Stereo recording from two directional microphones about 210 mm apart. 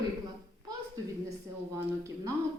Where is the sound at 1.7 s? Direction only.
15° right (ahead or behind).